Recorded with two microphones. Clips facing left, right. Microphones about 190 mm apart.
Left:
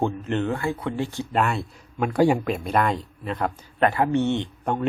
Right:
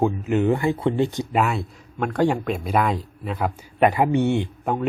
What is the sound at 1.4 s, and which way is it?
Speech, centre (ahead or behind).